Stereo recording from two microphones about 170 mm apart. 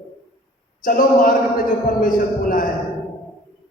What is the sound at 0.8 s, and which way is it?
A man's voice, 55° left (ahead or behind).